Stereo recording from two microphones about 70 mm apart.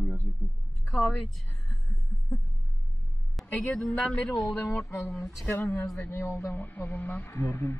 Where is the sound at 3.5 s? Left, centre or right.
Centre.